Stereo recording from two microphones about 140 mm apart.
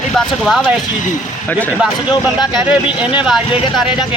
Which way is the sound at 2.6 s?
10° right (ahead or behind).